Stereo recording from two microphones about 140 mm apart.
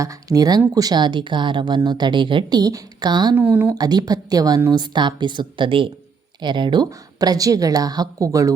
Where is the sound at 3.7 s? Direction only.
30° right (ahead or behind).